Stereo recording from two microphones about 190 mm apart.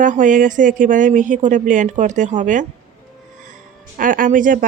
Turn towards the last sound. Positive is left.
turn(degrees=-45)  # may be behind; listen again after turning